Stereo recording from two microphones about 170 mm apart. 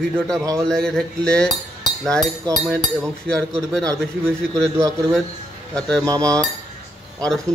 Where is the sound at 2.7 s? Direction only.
5° left (ahead or behind).